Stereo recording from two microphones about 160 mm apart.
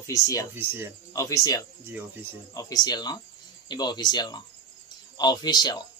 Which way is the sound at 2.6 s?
25° left (ahead or behind).